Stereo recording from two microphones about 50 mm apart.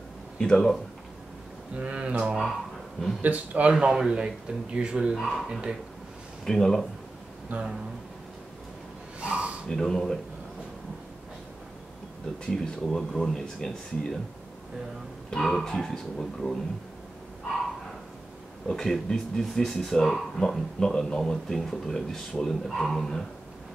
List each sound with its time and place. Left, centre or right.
0.4 s speech: centre
1.8 s speech: right
3.8 s speech: centre
5.1 s speech: centre
5.5 s speech: centre
6.4 s speech: centre
7.5 s speech: right
9.2 s gasp: right
9.7 s speech: centre
12.4 s speech: centre
15.6 s speech: centre
18.7 s speech: centre